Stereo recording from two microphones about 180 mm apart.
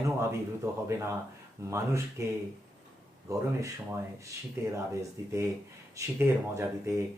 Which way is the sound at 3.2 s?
15° right (ahead or behind).